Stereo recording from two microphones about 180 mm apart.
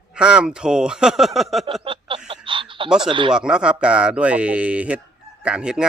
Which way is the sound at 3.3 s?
5° right (ahead or behind).